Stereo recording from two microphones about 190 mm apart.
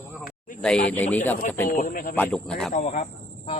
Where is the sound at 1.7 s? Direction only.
45° left (ahead or behind).